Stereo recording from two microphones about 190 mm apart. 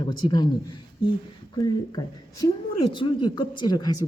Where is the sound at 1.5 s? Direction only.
20° left (ahead or behind).